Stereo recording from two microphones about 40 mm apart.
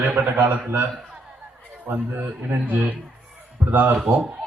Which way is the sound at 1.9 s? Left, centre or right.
Right.